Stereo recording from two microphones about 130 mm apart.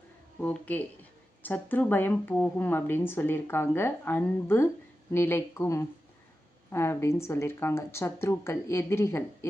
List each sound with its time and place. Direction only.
0.4 s speech: 10° left (ahead or behind)